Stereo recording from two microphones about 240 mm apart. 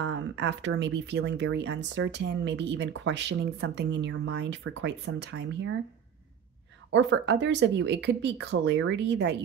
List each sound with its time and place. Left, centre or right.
0.0 s speech: right
6.9 s speech: right